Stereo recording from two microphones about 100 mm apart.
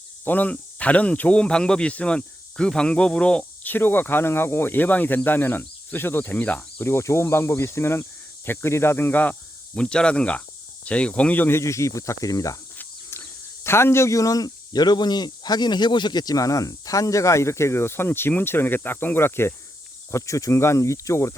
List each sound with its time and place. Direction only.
0.3 s speech: 15° left (ahead or behind)
9.7 s speech: 10° left (ahead or behind); by 12.5 s 35° left (ahead or behind)
12.7 s insect: 20° left (ahead or behind)
13.7 s speech: 25° left (ahead or behind)